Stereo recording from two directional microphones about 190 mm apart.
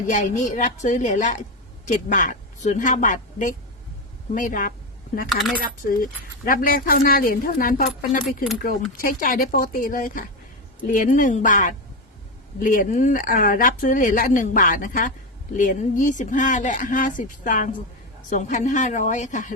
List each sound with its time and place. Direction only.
0.1 s a woman's voice: 40° left (ahead or behind)
5.3 s speech: centre (ahead or behind)
5.9 s speech: 45° left (ahead or behind)
9.2 s a woman's voice: 50° left (ahead or behind)